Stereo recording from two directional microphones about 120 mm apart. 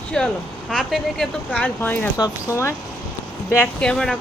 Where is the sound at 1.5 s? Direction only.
15° left (ahead or behind).